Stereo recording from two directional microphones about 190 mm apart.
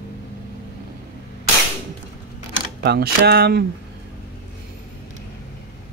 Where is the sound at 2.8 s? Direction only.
60° right (ahead or behind).